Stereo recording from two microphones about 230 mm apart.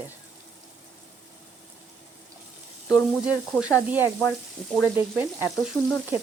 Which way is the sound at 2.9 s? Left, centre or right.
Centre.